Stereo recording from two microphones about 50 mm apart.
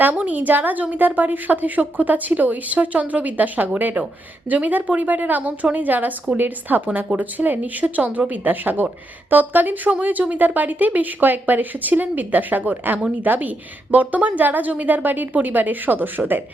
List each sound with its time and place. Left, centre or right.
0.0 s a woman's voice: right